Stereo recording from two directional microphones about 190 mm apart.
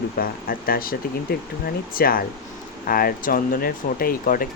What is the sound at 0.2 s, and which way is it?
Speech, 50° left (ahead or behind).